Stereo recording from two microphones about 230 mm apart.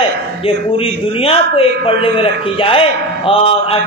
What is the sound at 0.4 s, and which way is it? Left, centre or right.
A man's voice, left.